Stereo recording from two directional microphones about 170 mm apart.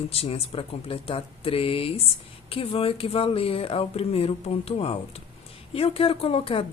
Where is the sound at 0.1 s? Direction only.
35° left (ahead or behind).